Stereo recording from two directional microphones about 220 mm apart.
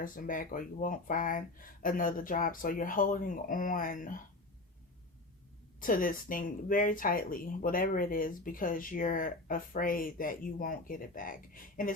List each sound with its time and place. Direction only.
0.0 s speech: 40° left (ahead or behind)
5.8 s speech: 40° left (ahead or behind)